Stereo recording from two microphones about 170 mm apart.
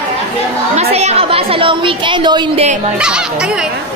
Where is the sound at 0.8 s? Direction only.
40° right (ahead or behind).